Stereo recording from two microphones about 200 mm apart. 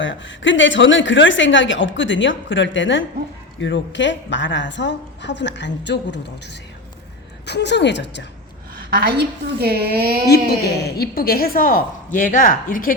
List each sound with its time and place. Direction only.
0.0 s a woman's voice: 70° left (ahead or behind)
8.7 s a woman's voice: 50° right (ahead or behind)
10.2 s a woman's voice: 50° left (ahead or behind)